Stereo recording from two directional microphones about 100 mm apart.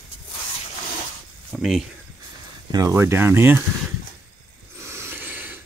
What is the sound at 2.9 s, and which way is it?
Speech, 25° right (ahead or behind).